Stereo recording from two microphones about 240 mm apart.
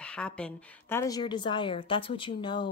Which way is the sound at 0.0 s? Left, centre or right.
Centre.